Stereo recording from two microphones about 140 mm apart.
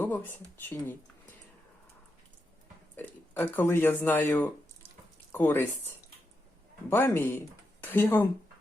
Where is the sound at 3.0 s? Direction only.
15° left (ahead or behind).